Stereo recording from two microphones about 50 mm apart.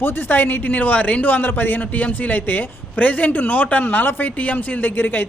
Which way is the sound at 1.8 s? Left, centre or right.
Left.